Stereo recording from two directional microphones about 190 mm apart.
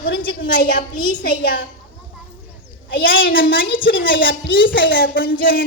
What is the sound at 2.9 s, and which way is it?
A woman's voice, 50° left (ahead or behind).